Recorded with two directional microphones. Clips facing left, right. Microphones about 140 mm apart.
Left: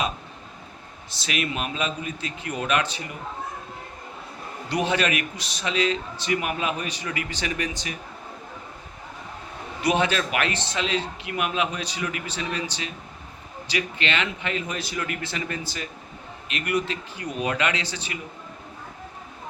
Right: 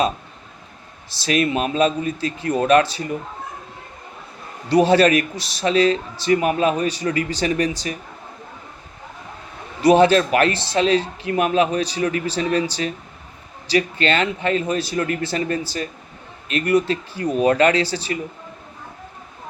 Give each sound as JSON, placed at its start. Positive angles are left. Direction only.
{"t": 1.1, "sound": "a man's voice", "side_deg": -35}
{"t": 4.7, "sound": "a man's voice", "side_deg": -35}
{"t": 9.8, "sound": "a man's voice", "side_deg": -35}